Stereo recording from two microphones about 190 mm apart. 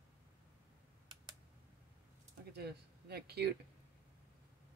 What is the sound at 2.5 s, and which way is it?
Speech, 55° right (ahead or behind).